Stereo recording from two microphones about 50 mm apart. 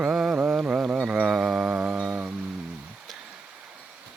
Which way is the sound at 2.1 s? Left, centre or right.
Right.